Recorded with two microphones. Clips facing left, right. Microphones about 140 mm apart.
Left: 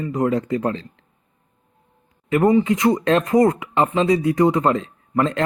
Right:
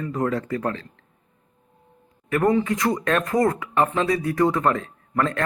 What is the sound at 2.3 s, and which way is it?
Speech, 20° left (ahead or behind).